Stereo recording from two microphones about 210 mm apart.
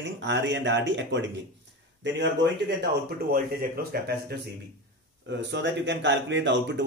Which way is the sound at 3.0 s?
45° right (ahead or behind).